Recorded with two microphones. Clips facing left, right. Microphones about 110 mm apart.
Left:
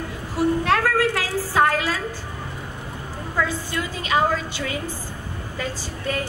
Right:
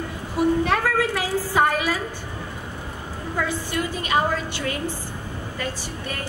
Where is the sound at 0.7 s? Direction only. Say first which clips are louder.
Left 2 dB; 90° left.